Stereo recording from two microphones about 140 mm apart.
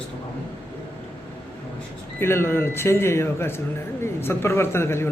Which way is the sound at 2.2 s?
15° left (ahead or behind).